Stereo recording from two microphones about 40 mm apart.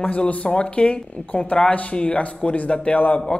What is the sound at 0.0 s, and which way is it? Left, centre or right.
Speech, left.